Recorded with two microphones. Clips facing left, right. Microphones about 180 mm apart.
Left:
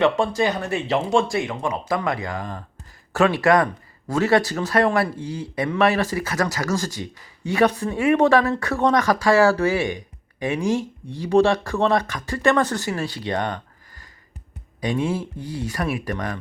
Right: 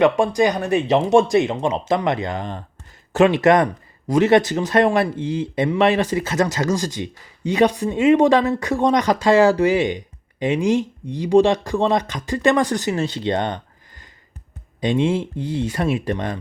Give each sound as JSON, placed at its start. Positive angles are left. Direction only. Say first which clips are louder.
{"t": 0.0, "sound": "speech", "louder": "right 3 dB", "side_deg": -15}
{"t": 14.8, "sound": "speech", "louder": "right 4 dB", "side_deg": -25}